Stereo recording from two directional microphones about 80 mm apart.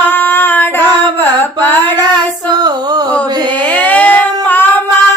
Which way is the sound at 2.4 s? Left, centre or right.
Right.